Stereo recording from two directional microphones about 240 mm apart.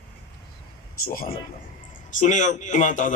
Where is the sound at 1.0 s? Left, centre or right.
Left.